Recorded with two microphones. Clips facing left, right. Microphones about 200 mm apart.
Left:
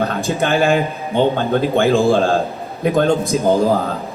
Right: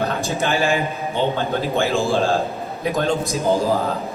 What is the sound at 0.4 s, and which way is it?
A man's voice, 55° left (ahead or behind).